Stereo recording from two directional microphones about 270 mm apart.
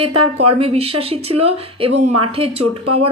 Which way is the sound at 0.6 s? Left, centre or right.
Right.